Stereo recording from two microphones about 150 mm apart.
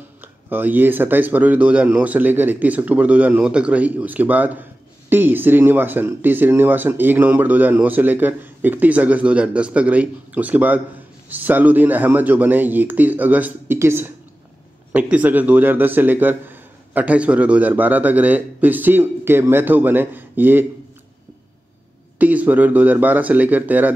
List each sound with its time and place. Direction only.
0.2 s a man's voice: 15° right (ahead or behind)
22.2 s a man's voice: 10° right (ahead or behind)